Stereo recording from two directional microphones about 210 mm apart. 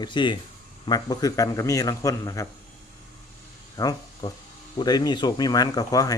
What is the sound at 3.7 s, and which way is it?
Speech, 20° left (ahead or behind).